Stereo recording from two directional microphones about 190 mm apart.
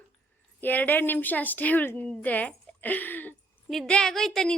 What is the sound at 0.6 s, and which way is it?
A woman's voice, 10° left (ahead or behind).